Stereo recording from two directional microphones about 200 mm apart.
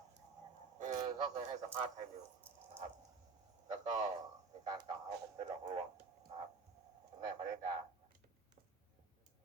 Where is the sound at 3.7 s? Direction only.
35° right (ahead or behind).